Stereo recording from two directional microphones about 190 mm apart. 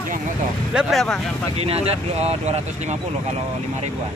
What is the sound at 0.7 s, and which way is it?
Speech, centre (ahead or behind).